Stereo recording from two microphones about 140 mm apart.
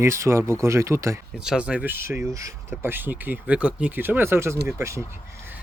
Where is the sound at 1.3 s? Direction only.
5° right (ahead or behind); by 5.0 s 20° right (ahead or behind).